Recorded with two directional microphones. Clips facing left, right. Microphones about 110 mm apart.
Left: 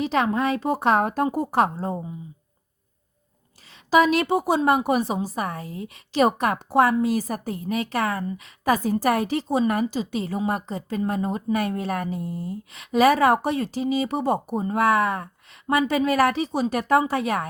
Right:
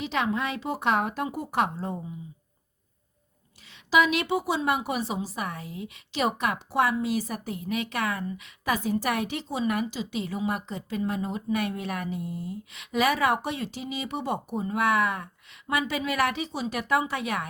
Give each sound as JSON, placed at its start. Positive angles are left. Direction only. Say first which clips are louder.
{"t": 0.0, "sound": "a woman's voice", "louder": "left 6 dB", "side_deg": 40}
{"t": 3.8, "sound": "a woman's voice", "louder": "left 5 dB", "side_deg": 40}